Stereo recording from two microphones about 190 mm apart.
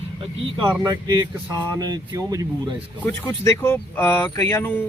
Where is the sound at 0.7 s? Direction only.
20° right (ahead or behind).